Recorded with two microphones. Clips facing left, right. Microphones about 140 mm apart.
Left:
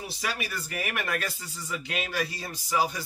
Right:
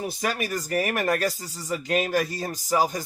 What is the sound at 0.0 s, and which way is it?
Speech, 45° right (ahead or behind).